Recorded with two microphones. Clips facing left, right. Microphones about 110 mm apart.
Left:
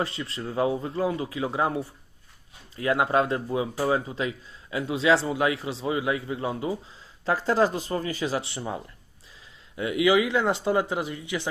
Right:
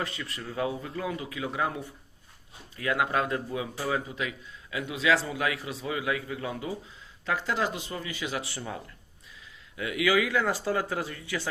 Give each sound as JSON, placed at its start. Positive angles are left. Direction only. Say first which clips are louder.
{"t": 0.0, "sound": "speech", "louder": "left 5 dB", "side_deg": 30}
{"t": 7.3, "sound": "speech", "louder": "left 6 dB", "side_deg": 35}